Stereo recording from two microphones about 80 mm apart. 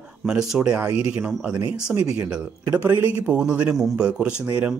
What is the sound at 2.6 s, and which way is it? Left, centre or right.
Speech, right.